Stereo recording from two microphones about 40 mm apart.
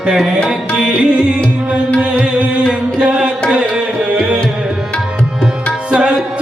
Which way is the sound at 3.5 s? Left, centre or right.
Right.